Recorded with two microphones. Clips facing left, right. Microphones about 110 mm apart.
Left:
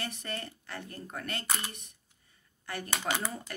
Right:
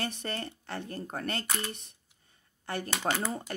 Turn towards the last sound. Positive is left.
turn(degrees=-35)  # may be behind; listen again after turning